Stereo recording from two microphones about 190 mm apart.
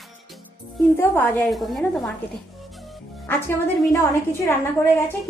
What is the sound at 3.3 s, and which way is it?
A woman's voice, 10° left (ahead or behind).